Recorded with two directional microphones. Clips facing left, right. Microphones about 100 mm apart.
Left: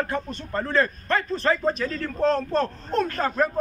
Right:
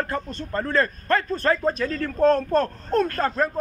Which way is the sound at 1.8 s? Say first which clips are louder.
Right 7 dB; 55° right (ahead or behind).